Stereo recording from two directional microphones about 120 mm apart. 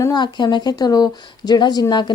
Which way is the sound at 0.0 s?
35° left (ahead or behind).